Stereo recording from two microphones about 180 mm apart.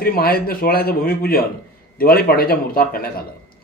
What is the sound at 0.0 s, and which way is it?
A man's voice, 55° left (ahead or behind).